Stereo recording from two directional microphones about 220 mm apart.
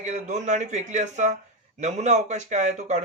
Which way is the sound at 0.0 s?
30° right (ahead or behind).